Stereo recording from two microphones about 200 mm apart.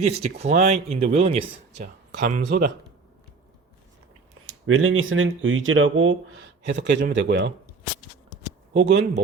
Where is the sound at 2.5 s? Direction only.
50° right (ahead or behind).